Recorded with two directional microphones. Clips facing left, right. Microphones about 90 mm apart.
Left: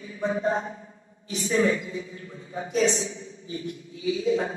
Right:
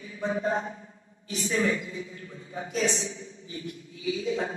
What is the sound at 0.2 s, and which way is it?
A woman's voice, 20° left (ahead or behind).